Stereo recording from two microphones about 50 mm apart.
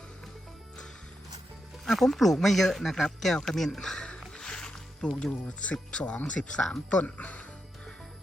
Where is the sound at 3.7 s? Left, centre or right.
Centre.